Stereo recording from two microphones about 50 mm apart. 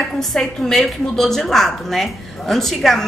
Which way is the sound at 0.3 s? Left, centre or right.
Centre.